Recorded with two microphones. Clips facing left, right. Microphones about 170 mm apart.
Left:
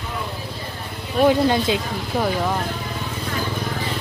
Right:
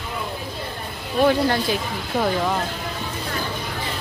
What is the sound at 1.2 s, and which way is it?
Speech, 20° left (ahead or behind).